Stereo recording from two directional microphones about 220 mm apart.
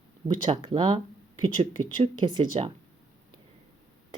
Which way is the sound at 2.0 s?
20° right (ahead or behind).